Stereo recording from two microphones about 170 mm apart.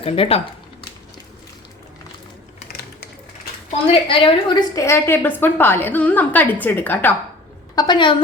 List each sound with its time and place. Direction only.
0.0 s speech: 35° left (ahead or behind)
3.9 s a woman's voice: 30° left (ahead or behind); by 7.1 s 10° left (ahead or behind)
7.8 s a woman's voice: 25° left (ahead or behind)